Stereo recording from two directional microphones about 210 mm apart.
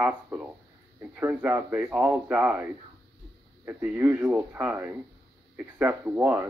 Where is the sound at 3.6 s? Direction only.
10° right (ahead or behind).